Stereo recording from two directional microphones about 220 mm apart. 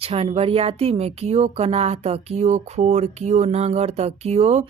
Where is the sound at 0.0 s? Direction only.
25° right (ahead or behind).